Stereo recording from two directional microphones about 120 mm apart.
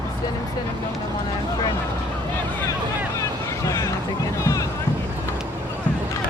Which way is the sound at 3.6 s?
25° left (ahead or behind).